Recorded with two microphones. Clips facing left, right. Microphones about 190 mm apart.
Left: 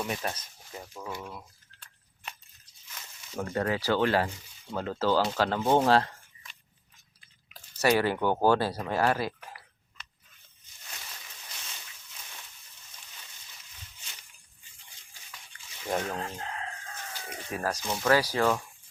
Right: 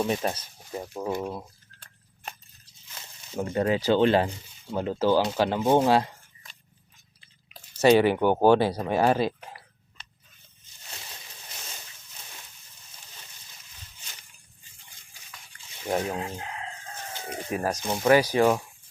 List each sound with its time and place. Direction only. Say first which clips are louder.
0.0 s speech: right 7 dB; 25° right (ahead or behind)
1.2 s a sound: right 9 dB; 35° right (ahead or behind)
3.4 s speech: right 5 dB; 20° right (ahead or behind)
7.8 s speech: right 6 dB; 20° right (ahead or behind)
15.9 s speech: right 3 dB; 10° right (ahead or behind)